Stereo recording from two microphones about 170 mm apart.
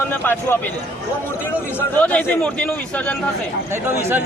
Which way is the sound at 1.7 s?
10° left (ahead or behind).